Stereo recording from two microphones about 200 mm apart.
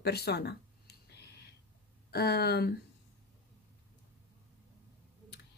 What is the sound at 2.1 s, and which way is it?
Speech, 55° left (ahead or behind).